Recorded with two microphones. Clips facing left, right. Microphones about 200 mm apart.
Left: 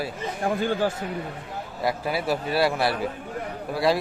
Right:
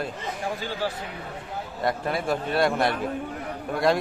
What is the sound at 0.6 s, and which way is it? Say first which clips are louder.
Speech: left 6 dB; 50° left (ahead or behind).